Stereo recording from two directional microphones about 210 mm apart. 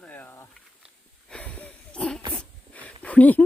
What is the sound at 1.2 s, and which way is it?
Wheeze, 5° left (ahead or behind).